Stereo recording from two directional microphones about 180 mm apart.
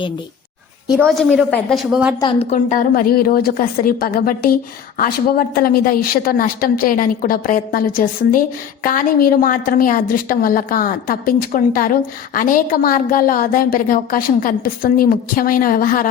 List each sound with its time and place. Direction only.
0.9 s a woman's voice: centre (ahead or behind)
2.4 s speech: 40° left (ahead or behind)